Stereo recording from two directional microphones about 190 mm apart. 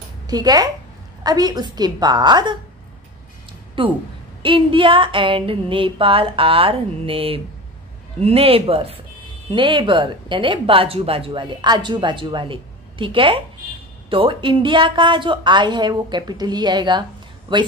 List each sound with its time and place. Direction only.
0.3 s speech: 20° right (ahead or behind)
3.8 s speech: 25° right (ahead or behind)